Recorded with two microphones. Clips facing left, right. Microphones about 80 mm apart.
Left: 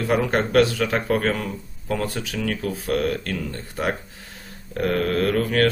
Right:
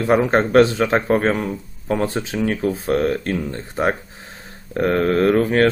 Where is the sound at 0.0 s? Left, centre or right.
Right.